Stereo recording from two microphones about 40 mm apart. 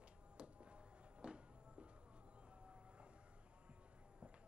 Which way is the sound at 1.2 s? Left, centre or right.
Right.